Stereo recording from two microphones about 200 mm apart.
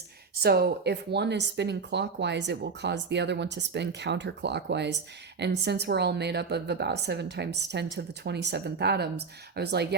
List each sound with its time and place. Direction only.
0.4 s speech: 50° right (ahead or behind)